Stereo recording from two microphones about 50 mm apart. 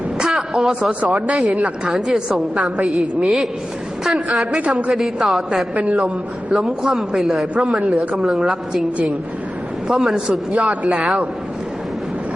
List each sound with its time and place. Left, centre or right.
0.2 s a sound: centre
0.7 s a woman's voice: centre
1.4 s a woman's voice: centre
5.7 s speech: right
6.5 s a woman's voice: centre
9.9 s a woman's voice: centre